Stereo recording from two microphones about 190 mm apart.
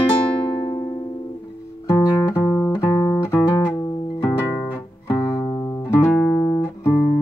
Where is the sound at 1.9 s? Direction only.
10° left (ahead or behind).